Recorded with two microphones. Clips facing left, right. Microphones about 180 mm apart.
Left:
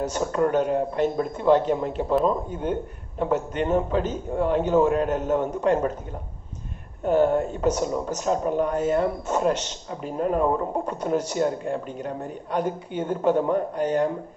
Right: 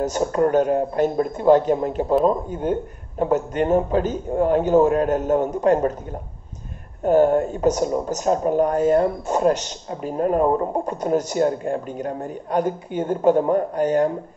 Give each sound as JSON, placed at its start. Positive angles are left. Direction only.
{"t": 0.3, "sound": "a man's voice", "side_deg": -40}
{"t": 3.2, "sound": "speech", "side_deg": -40}
{"t": 7.1, "sound": "a man's voice", "side_deg": -40}